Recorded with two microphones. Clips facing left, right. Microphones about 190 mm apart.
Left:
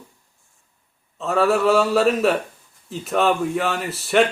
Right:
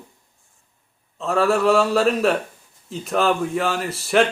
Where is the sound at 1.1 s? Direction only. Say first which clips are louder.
Even; centre (ahead or behind).